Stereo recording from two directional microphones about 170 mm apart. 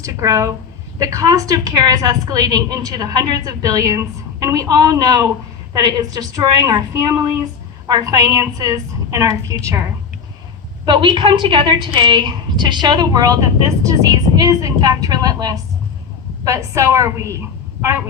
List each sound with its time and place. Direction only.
0.0 s a woman's voice: 20° right (ahead or behind)